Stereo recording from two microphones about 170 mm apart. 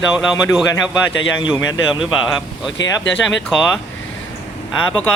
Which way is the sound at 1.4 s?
25° left (ahead or behind).